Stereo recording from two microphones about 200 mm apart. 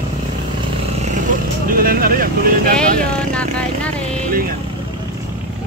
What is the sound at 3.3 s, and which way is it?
Speech, 5° left (ahead or behind).